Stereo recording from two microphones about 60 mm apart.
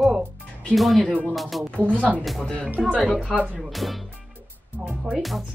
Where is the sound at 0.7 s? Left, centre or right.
Centre.